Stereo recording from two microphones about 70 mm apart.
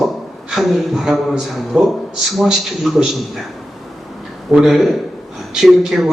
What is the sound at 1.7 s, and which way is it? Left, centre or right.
Speech, centre.